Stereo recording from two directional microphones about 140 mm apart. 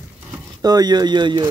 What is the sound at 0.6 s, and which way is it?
Speech, 30° right (ahead or behind).